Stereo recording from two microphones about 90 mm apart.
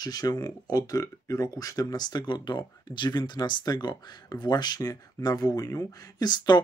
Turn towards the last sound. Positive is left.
turn(degrees=50)  # may be behind; listen again after turning